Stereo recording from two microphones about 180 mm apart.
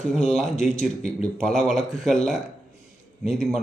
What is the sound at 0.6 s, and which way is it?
Speech, 40° left (ahead or behind).